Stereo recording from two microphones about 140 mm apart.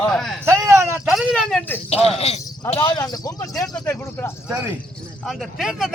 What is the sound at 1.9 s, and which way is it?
Speech, 45° left (ahead or behind).